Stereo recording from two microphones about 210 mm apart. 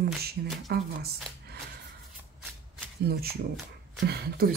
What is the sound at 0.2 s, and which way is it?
Speech, 50° right (ahead or behind).